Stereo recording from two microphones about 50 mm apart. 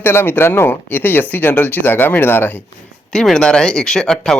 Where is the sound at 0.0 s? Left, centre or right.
Left.